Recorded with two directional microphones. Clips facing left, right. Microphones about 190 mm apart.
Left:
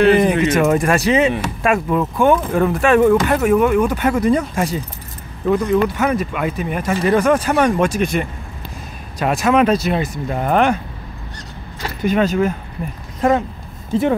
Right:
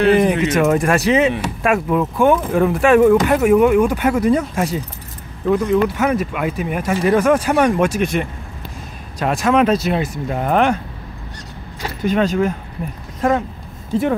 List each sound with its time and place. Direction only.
0.1 s speech: centre (ahead or behind)
12.0 s speech: 5° left (ahead or behind)